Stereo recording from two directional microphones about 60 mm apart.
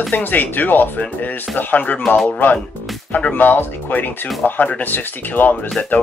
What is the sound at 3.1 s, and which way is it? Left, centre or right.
Speech, left.